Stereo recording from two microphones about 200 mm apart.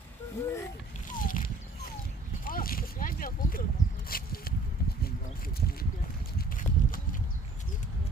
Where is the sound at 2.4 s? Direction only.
45° left (ahead or behind).